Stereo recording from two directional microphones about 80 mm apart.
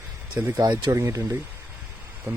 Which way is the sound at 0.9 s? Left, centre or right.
Right.